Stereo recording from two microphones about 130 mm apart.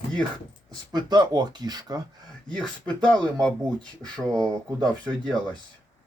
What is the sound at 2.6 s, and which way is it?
Speech, 10° left (ahead or behind).